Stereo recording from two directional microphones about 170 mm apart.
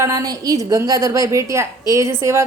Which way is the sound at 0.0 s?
20° right (ahead or behind).